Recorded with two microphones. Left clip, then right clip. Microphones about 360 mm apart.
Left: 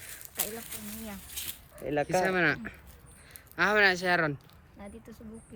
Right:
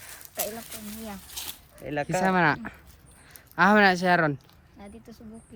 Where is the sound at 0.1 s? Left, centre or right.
Centre.